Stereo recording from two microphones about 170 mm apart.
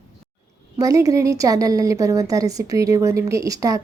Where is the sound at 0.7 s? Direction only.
20° right (ahead or behind).